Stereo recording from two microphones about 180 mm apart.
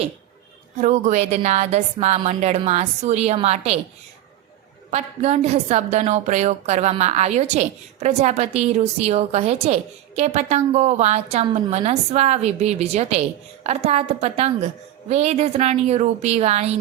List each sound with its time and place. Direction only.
0.8 s a woman's voice: 40° right (ahead or behind)
4.9 s a woman's voice: 35° right (ahead or behind)